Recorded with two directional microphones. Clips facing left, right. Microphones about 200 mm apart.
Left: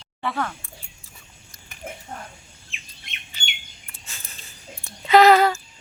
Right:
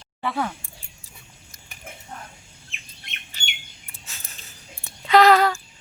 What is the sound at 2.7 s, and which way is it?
Bird, 55° right (ahead or behind).